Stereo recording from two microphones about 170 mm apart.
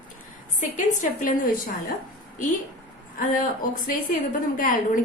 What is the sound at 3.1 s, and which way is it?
A woman's voice, 50° left (ahead or behind).